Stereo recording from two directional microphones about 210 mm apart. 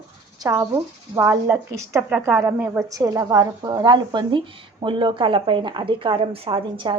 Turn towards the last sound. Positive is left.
turn(degrees=-25)  # may be behind; listen again after turning